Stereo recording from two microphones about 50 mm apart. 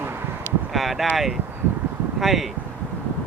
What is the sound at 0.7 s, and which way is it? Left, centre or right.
Speech, centre.